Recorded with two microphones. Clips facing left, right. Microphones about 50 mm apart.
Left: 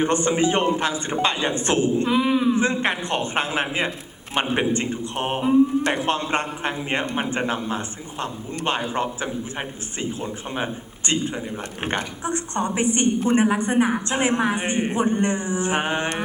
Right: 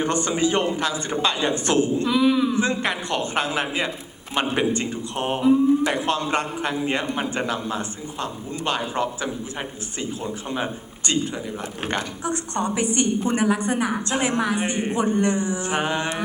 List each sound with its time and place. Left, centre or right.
0.0 s a man's voice: left